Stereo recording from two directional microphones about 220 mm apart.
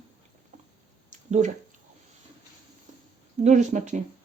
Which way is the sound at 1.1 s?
35° right (ahead or behind).